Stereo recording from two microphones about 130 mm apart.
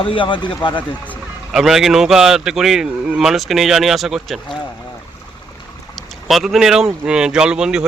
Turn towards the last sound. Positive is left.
turn(degrees=-5)  # may be behind; listen again after turning